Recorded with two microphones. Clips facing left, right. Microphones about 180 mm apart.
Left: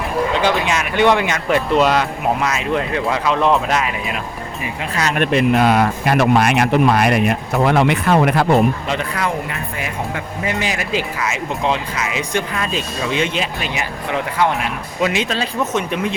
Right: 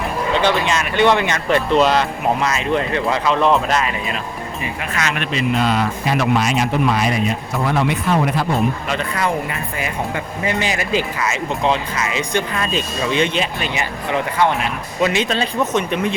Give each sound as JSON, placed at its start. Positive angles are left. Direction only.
{"t": 0.4, "sound": "speech", "side_deg": 10}
{"t": 4.9, "sound": "speech", "side_deg": 40}
{"t": 9.1, "sound": "speech", "side_deg": 0}